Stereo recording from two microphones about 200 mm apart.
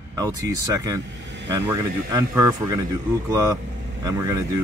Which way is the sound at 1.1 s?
60° right (ahead or behind).